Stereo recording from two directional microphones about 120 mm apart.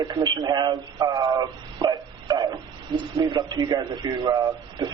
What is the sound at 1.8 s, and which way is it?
Dog, 40° right (ahead or behind).